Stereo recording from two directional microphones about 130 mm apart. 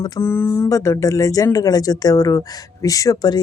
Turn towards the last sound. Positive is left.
turn(degrees=30)  # may be behind; listen again after turning